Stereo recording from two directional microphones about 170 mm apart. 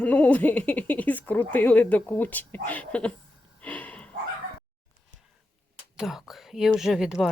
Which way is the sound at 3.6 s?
10° left (ahead or behind).